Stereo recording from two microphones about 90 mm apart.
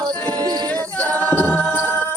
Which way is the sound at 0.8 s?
15° left (ahead or behind).